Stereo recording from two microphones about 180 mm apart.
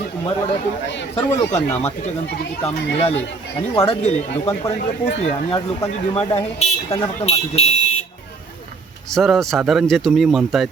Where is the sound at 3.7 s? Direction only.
30° left (ahead or behind).